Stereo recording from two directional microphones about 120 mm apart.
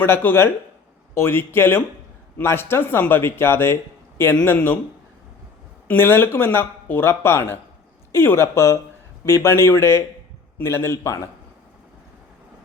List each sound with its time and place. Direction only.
0.0 s speech: 15° left (ahead or behind)
5.9 s speech: 20° left (ahead or behind)